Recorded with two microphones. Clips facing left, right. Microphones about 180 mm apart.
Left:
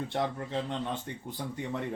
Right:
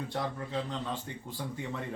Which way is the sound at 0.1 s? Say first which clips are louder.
Left 2 dB; 25° left (ahead or behind).